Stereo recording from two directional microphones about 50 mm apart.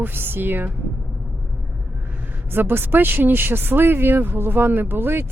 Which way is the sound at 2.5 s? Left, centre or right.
Right.